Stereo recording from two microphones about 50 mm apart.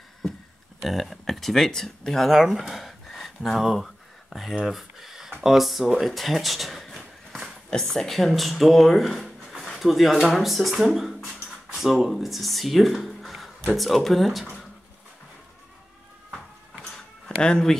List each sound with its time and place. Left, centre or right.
0.8 s speech: centre
2.3 s a sound: centre
5.4 s speech: centre
17.4 s speech: centre